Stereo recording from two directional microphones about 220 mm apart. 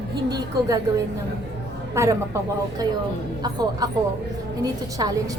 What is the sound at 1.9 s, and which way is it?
A woman's voice, 15° right (ahead or behind).